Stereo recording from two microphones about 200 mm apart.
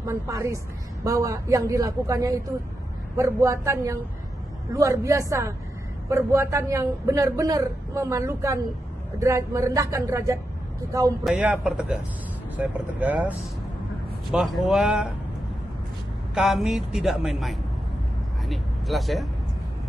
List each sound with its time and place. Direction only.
0.0 s a man's voice: 15° right (ahead or behind)
11.2 s a woman's voice: 5° right (ahead or behind)
16.3 s a woman's voice: centre (ahead or behind)